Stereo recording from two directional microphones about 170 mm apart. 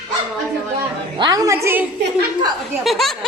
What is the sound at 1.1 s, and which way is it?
Speech, 25° right (ahead or behind).